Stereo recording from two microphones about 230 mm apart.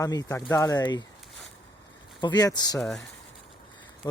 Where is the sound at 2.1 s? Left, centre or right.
Centre.